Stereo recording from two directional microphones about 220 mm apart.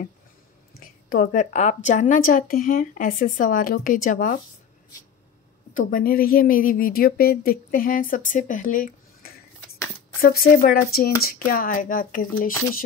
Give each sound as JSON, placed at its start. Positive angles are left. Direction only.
{"t": 0.7, "sound": "speech", "side_deg": 40}
{"t": 5.8, "sound": "speech", "side_deg": 40}